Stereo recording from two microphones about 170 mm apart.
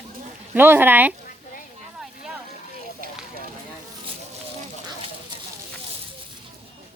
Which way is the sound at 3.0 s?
55° right (ahead or behind).